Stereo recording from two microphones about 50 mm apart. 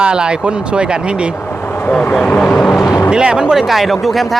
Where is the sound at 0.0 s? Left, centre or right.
Centre.